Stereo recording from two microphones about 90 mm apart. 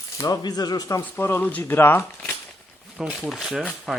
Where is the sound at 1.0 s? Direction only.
25° left (ahead or behind).